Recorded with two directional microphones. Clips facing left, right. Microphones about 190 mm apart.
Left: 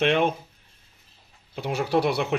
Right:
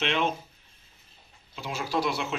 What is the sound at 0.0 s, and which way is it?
Speech, 55° left (ahead or behind).